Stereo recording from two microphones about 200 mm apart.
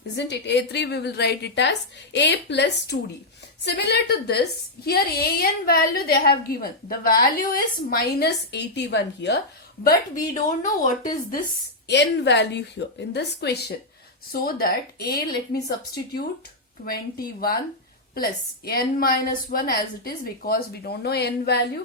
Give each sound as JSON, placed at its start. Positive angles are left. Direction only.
{"t": 0.2, "sound": "a woman's voice", "side_deg": 60}
{"t": 10.3, "sound": "speech", "side_deg": 40}
{"t": 11.9, "sound": "a woman's voice", "side_deg": 60}